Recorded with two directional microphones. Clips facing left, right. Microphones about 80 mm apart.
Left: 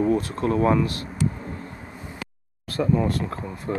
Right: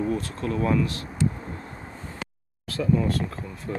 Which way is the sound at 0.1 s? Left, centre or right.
Left.